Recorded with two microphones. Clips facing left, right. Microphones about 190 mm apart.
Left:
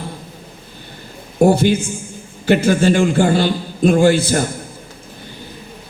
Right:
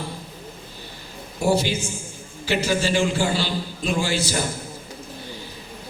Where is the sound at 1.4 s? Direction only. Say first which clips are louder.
Left 8 dB; 55° left (ahead or behind).